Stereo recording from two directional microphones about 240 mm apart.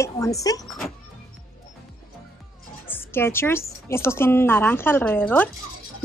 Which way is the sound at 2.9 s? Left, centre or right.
Centre.